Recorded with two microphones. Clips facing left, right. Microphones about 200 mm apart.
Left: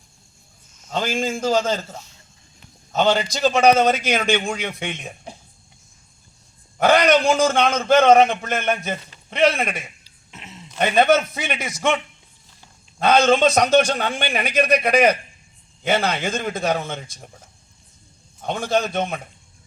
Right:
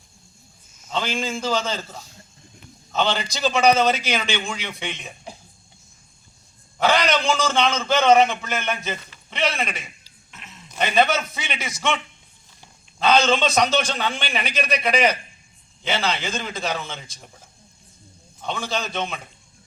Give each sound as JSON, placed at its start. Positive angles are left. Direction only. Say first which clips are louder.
{"t": 0.9, "sound": "a man's voice", "louder": "left 3 dB", "side_deg": 45}
{"t": 2.9, "sound": "a man's voice", "louder": "left 5 dB", "side_deg": 45}
{"t": 6.7, "sound": "a man's voice", "louder": "left 5 dB", "side_deg": 50}
{"t": 10.3, "sound": "a sound", "louder": "left 5 dB", "side_deg": 25}
{"t": 10.8, "sound": "a man's voice", "louder": "left 4 dB", "side_deg": 50}
{"t": 13.0, "sound": "a man's voice", "louder": "left 3 dB", "side_deg": 50}
{"t": 18.4, "sound": "a man's voice", "louder": "left 6 dB", "side_deg": 50}